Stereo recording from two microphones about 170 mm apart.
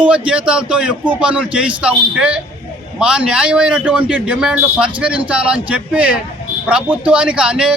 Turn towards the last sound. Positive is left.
turn(degrees=-5)  # may be behind; listen again after turning